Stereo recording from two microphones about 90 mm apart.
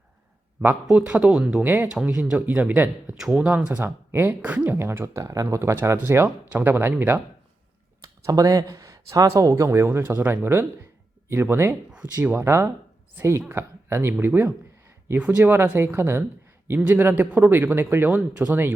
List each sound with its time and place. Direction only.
0.9 s speech: 10° right (ahead or behind)
1.6 s speech: 20° right (ahead or behind)
1.9 s speech: 10° right (ahead or behind)
8.0 s speech: 40° right (ahead or behind)
15.2 s speech: 15° right (ahead or behind)
15.5 s speech: 25° right (ahead or behind)